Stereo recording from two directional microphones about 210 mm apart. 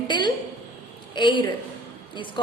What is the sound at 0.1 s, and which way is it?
A woman's voice, 20° left (ahead or behind).